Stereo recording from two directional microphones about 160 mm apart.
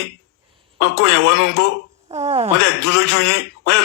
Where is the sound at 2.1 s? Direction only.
40° right (ahead or behind).